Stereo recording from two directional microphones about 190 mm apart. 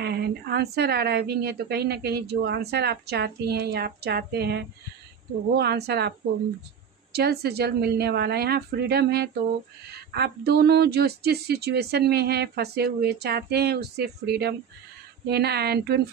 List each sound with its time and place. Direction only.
0.0 s a woman's voice: 60° right (ahead or behind)